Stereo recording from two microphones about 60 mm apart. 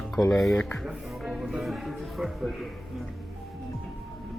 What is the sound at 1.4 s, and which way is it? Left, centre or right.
Music, centre.